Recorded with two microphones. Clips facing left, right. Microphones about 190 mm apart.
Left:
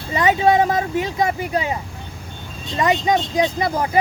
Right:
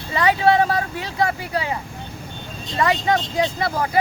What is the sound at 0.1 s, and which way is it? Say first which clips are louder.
Speech: left 1 dB; 20° left (ahead or behind).